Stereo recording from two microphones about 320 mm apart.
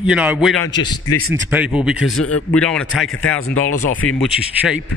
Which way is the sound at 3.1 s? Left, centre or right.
Left.